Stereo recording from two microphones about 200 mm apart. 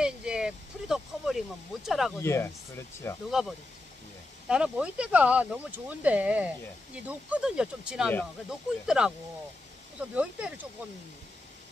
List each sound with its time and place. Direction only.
0.0 s a sound: 5° right (ahead or behind)
2.2 s speech: 15° left (ahead or behind)
4.5 s speech: 5° right (ahead or behind)
10.1 s speech: 5° right (ahead or behind)